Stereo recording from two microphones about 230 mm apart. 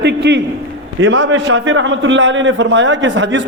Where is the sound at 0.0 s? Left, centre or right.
Right.